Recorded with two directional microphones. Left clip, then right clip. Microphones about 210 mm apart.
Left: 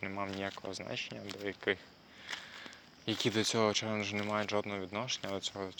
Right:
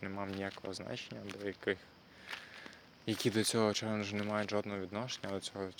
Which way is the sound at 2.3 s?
45° left (ahead or behind).